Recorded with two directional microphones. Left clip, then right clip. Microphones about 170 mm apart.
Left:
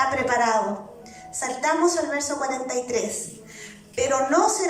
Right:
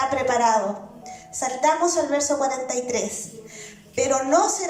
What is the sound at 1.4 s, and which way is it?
A woman's voice, 20° right (ahead or behind).